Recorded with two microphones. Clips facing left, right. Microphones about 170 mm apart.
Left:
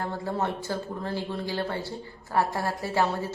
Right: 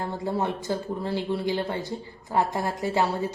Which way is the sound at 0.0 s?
15° right (ahead or behind).